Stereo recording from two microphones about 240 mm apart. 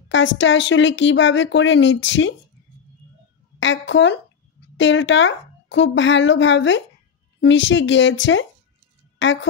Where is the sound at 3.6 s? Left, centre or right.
Left.